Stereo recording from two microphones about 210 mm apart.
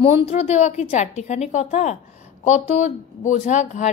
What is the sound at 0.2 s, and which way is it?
A woman's voice, 30° left (ahead or behind).